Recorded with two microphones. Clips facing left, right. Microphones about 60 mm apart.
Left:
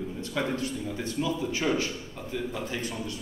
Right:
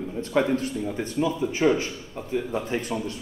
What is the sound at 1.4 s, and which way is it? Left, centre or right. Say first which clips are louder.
A man's voice: right 5 dB; centre.